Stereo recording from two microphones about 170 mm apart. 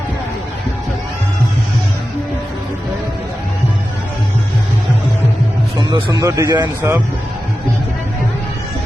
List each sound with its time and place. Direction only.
5.9 s speech: 20° right (ahead or behind)